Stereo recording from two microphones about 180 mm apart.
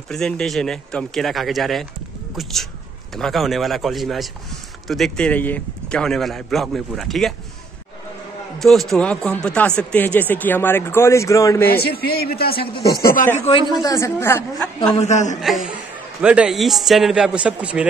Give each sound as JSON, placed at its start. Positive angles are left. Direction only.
{"t": 0.1, "sound": "a man's voice", "side_deg": 0}
{"t": 8.5, "sound": "a man's voice", "side_deg": 0}
{"t": 11.8, "sound": "a man's voice", "side_deg": 60}
{"t": 13.5, "sound": "a man's voice", "side_deg": 25}
{"t": 13.9, "sound": "speech", "side_deg": 15}
{"t": 15.0, "sound": "a man's voice", "side_deg": 40}
{"t": 15.4, "sound": "a man's voice", "side_deg": 0}